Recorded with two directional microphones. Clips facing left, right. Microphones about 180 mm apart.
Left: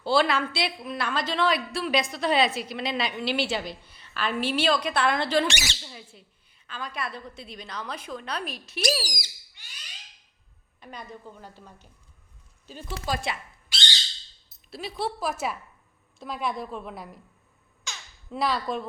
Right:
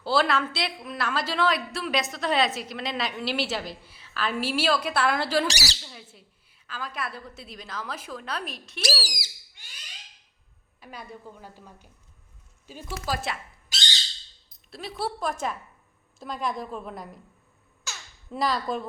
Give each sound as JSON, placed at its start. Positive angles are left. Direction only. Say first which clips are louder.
{"t": 0.0, "sound": "a woman's voice", "louder": "left 1 dB", "side_deg": 0}
{"t": 5.5, "sound": "speech", "louder": "even", "side_deg": -35}
{"t": 5.8, "sound": "a woman's voice", "louder": "left 1 dB", "side_deg": 0}
{"t": 10.8, "sound": "a woman's voice", "louder": "even", "side_deg": -5}
{"t": 13.1, "sound": "a woman's voice", "louder": "left 1 dB", "side_deg": 0}
{"t": 14.7, "sound": "a woman's voice", "louder": "left 1 dB", "side_deg": 0}
{"t": 17.8, "sound": "a sound", "louder": "even", "side_deg": 0}